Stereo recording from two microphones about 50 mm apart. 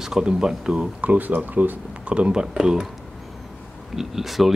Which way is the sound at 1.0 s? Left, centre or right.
Right.